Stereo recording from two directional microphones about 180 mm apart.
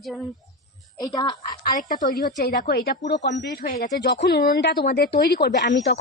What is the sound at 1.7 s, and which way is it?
A woman's voice, 50° left (ahead or behind).